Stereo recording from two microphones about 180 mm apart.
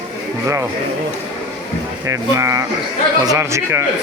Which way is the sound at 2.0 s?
15° right (ahead or behind).